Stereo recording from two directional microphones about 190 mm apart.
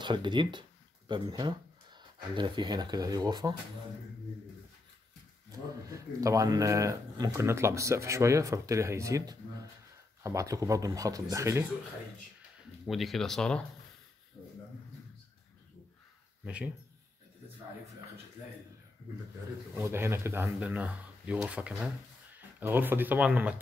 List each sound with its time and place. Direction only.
0.0 s speech: 25° right (ahead or behind)
5.9 s speech: 15° right (ahead or behind)
12.8 s speech: centre (ahead or behind)
16.4 s speech: 5° right (ahead or behind)
19.8 s speech: 15° right (ahead or behind)